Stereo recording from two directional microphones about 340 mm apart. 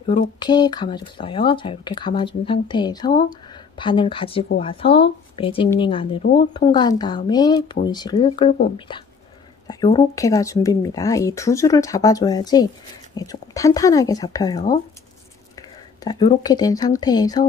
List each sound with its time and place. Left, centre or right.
0.0 s speech: centre
16.0 s speech: centre